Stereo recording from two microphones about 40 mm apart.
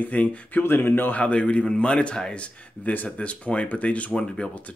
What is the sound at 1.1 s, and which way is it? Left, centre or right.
Speech, left.